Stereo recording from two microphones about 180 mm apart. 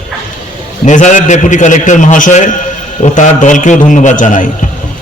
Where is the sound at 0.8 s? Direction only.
45° left (ahead or behind).